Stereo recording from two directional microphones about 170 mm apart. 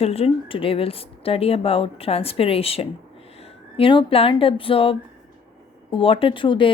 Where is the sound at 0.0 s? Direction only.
35° left (ahead or behind).